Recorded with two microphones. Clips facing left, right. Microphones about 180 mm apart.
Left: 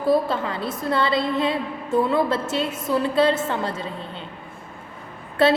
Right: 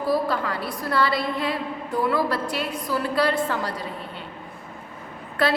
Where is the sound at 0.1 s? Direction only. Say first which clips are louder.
Left 3 dB; 25° left (ahead or behind).